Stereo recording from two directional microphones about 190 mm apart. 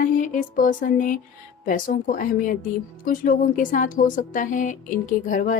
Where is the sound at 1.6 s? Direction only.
45° left (ahead or behind).